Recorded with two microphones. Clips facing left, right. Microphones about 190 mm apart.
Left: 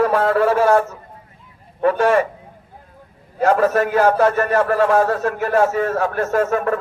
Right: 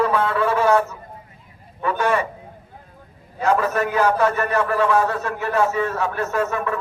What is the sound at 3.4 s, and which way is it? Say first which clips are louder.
A man's voice: left 4 dB; 45° left (ahead or behind).